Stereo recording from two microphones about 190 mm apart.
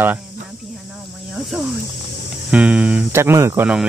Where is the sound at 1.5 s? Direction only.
5° right (ahead or behind).